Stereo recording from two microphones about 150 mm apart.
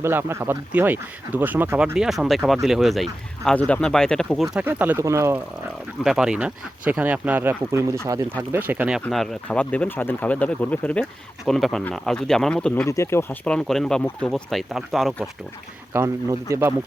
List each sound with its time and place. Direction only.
0.0 s speech: 15° right (ahead or behind)
2.0 s speech: centre (ahead or behind); by 5.4 s 20° right (ahead or behind)
6.0 s speech: 5° right (ahead or behind)
9.0 s speech: 5° left (ahead or behind)
12.8 s speech: 20° left (ahead or behind)
13.4 s speech: 5° left (ahead or behind)
15.9 s speech: 20° right (ahead or behind)